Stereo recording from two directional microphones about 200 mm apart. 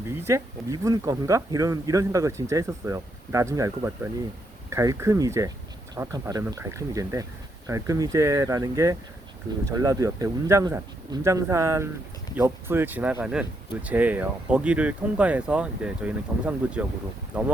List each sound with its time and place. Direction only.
0.2 s speech: 15° right (ahead or behind)